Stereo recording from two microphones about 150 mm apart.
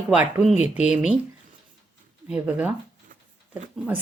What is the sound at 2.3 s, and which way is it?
Speech, 10° right (ahead or behind).